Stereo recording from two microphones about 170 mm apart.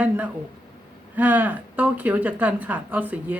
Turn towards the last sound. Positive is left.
turn(degrees=-10)  # may be behind; listen again after turning